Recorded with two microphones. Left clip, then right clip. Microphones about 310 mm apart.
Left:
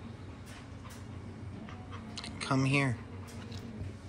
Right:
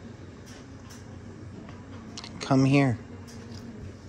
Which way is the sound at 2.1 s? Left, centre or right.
Right.